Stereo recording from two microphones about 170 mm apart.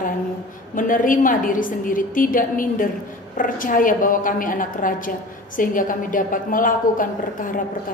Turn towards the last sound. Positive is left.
turn(degrees=55)  # may be behind; listen again after turning